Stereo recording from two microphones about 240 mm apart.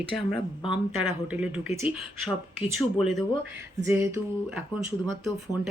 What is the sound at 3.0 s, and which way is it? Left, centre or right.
Speech, centre.